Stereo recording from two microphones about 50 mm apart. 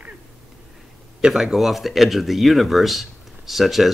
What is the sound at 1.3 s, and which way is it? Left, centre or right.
Speech, centre.